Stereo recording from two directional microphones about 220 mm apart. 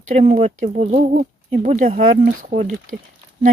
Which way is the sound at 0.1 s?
30° right (ahead or behind).